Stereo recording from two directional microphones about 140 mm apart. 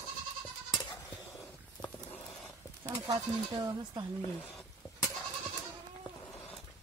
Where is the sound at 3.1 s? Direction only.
30° right (ahead or behind).